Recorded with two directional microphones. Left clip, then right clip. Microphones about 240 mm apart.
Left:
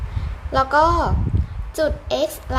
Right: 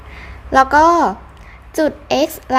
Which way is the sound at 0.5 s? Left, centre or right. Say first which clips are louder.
Right 6 dB; right.